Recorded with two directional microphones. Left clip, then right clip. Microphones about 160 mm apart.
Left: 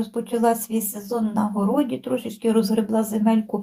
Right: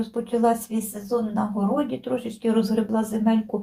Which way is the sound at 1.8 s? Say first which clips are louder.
Left 2 dB; 25° left (ahead or behind).